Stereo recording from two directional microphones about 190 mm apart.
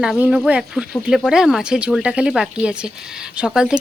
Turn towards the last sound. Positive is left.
turn(degrees=-5)  # may be behind; listen again after turning